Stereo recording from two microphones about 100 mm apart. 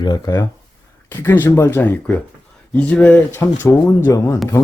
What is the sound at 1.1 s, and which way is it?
Speech, 25° left (ahead or behind).